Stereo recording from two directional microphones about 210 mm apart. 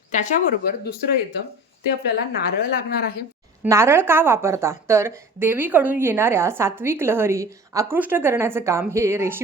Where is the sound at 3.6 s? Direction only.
10° right (ahead or behind).